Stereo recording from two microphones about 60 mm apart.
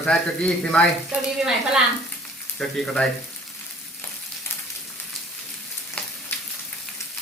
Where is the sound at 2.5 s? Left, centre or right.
Centre.